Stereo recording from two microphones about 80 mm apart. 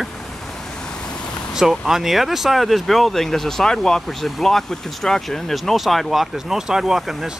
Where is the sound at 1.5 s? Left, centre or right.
Centre.